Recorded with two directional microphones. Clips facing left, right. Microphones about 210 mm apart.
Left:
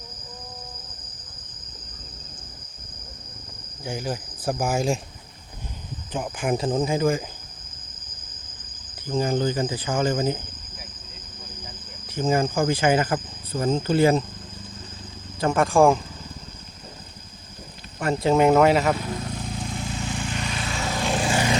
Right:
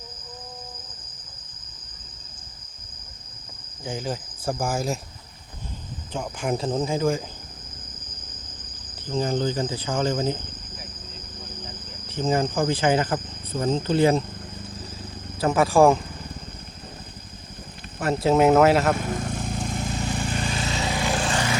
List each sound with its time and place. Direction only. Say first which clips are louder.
3.8 s speech: even; 15° left (ahead or behind)
6.1 s speech: left 2 dB; 15° left (ahead or behind)
9.0 s speech: left 1 dB; 10° left (ahead or behind)
12.1 s speech: left 1 dB; 10° left (ahead or behind)
15.4 s speech: right 1 dB; 5° right (ahead or behind)
18.0 s speech: even; centre (ahead or behind)
18.9 s vehicle: right 2 dB; 50° right (ahead or behind); by 21.0 s 20° right (ahead or behind)
21.0 s vehicle: left 3 dB; centre (ahead or behind)
21.2 s vehicle: left 3 dB; 15° left (ahead or behind)